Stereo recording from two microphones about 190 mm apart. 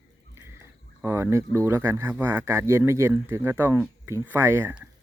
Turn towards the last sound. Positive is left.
turn(degrees=-10)  # may be behind; listen again after turning